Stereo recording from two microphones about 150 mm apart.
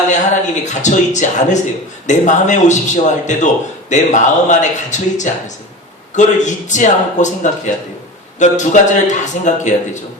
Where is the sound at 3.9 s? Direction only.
55° left (ahead or behind).